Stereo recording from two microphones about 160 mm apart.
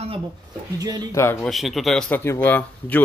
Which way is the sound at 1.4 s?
Centre (ahead or behind).